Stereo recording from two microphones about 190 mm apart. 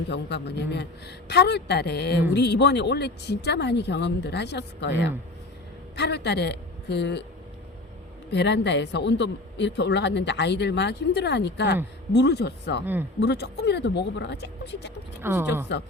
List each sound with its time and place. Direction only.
0.1 s speech: 60° left (ahead or behind)
8.3 s speech: 65° left (ahead or behind)
12.8 s speech: 10° right (ahead or behind)
13.1 s speech: 60° left (ahead or behind)
15.2 s speech: 10° right (ahead or behind)
15.7 s speech: 65° left (ahead or behind)